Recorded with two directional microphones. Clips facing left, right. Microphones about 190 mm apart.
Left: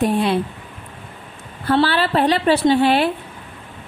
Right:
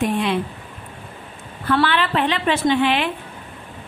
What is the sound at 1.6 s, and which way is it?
A woman's voice, 35° left (ahead or behind).